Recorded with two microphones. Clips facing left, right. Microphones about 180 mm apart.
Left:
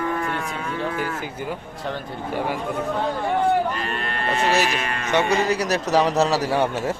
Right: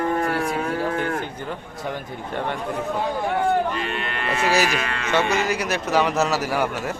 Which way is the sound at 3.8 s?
40° left (ahead or behind).